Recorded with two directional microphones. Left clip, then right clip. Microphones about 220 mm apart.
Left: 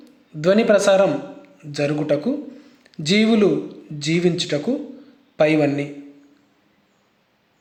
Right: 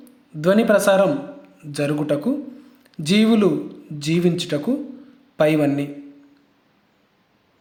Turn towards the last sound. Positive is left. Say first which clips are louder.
# left 1 dB
turn(degrees=-10)  # may be behind; listen again after turning